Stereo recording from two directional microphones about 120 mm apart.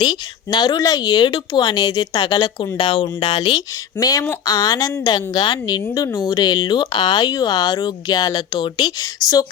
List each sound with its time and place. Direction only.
0.0 s a woman's voice: 40° left (ahead or behind)
2.6 s a woman's voice: 45° left (ahead or behind); by 9.5 s 30° left (ahead or behind)